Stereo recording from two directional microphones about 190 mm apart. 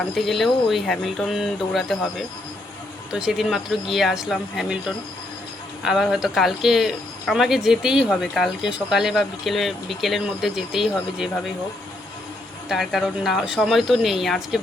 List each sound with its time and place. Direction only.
0.0 s speech: centre (ahead or behind)
12.6 s speech: centre (ahead or behind)